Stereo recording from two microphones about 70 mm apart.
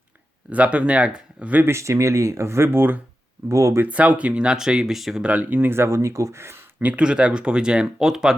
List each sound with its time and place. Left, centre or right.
0.5 s speech: centre
1.6 s speech: right
3.5 s speech: right
3.8 s speech: centre
5.2 s speech: centre; by 6.6 s right
6.7 s speech: centre